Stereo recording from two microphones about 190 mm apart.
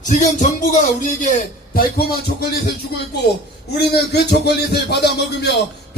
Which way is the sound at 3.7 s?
55° left (ahead or behind).